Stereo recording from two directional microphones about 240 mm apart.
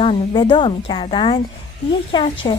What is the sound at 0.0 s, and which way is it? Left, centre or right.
A woman's voice, left.